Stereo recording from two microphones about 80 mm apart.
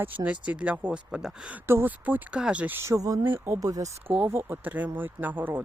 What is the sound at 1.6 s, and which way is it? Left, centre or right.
Speech, right.